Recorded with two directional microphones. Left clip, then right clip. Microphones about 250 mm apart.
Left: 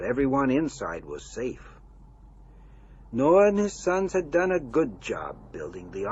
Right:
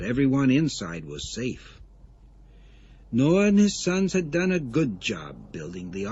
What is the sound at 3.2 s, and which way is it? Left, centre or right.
Speech, centre.